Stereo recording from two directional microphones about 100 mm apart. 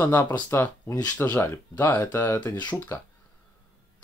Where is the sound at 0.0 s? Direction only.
20° left (ahead or behind).